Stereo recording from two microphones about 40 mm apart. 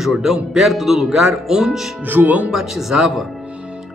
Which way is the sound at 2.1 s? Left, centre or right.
Right.